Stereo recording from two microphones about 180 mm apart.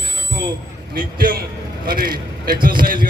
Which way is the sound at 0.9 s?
55° right (ahead or behind).